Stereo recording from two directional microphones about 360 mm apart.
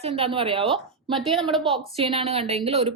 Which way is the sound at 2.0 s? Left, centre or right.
Centre.